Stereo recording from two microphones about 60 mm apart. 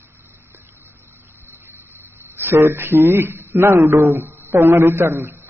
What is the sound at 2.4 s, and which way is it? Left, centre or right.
Speech, right.